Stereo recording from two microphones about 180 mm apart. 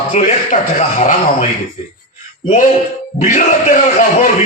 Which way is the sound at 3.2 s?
45° left (ahead or behind).